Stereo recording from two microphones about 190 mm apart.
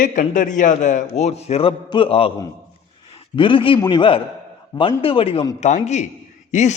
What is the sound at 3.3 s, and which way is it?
A man's voice, 25° left (ahead or behind).